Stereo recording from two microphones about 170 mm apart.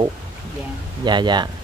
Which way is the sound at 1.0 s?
25° right (ahead or behind).